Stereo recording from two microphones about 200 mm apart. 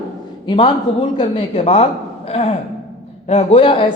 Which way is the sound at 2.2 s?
30° left (ahead or behind).